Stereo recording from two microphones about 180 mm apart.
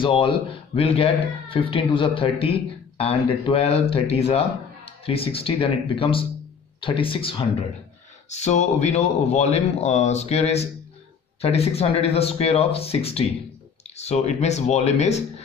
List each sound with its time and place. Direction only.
0.0 s speech: 30° left (ahead or behind)